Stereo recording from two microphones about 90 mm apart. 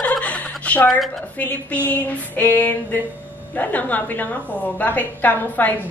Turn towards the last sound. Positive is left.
turn(degrees=20)  # may be behind; listen again after turning